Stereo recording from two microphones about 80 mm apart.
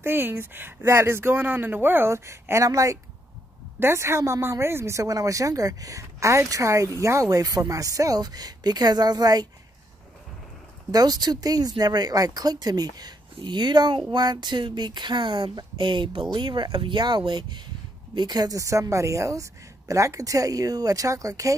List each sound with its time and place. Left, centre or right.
0.0 s speech: right
3.8 s speech: right
10.9 s speech: right
13.4 s speech: right
18.6 s speech: right